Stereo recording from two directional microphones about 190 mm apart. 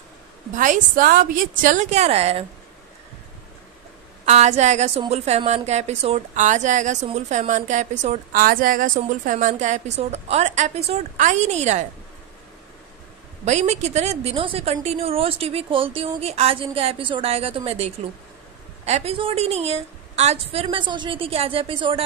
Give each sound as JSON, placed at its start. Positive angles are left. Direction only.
{"t": 0.5, "sound": "a woman's voice", "side_deg": -40}
{"t": 4.3, "sound": "a woman's voice", "side_deg": -35}
{"t": 13.5, "sound": "a woman's voice", "side_deg": -35}